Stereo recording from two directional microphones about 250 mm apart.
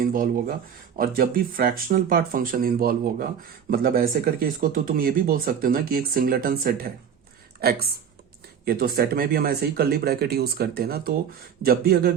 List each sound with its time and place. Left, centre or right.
0.0 s speech: right